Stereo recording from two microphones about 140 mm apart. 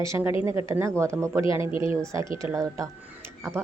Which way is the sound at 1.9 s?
20° right (ahead or behind).